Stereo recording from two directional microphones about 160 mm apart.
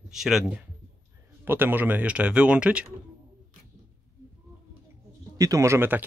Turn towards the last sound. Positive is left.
turn(degrees=-10)  # may be behind; listen again after turning